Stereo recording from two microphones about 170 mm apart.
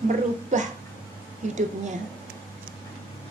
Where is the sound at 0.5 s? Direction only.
45° right (ahead or behind).